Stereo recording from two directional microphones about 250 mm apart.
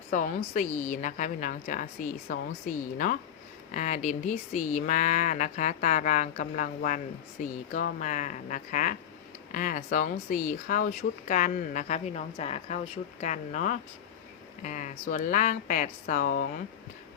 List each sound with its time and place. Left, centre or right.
0.1 s speech: left